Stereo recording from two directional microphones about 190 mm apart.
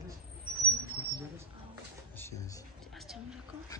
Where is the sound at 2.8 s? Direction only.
Centre (ahead or behind).